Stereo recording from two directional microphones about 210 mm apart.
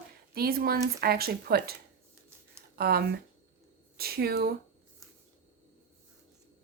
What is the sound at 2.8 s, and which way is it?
Speech, 45° right (ahead or behind).